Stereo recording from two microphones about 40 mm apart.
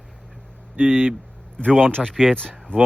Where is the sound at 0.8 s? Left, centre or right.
Right.